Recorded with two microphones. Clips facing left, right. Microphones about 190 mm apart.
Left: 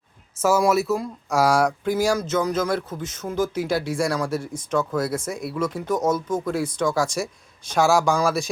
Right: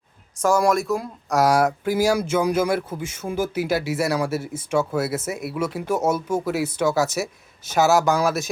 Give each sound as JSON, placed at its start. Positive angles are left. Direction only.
{"t": 0.4, "sound": "speech", "side_deg": 5}